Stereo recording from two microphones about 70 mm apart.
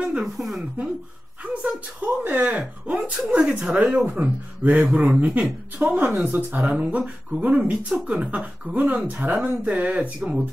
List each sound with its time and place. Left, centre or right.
0.0 s speech: centre
1.4 s speech: centre